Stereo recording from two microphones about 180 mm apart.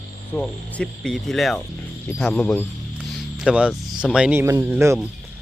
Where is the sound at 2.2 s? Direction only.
5° left (ahead or behind).